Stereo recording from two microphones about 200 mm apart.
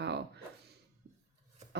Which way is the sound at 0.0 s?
55° right (ahead or behind).